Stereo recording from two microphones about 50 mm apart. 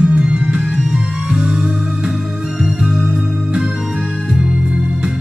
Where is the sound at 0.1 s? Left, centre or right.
Right.